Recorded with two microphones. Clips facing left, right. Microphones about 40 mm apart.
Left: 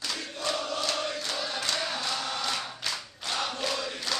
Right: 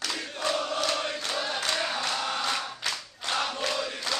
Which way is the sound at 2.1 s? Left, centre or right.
Right.